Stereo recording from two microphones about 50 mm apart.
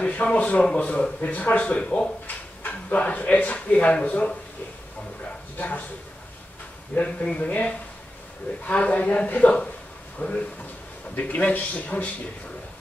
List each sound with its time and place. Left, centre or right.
0.0 s speech: left
2.2 s drawer open or close: left
3.0 s speech: left
5.6 s speech: left
7.0 s speech: left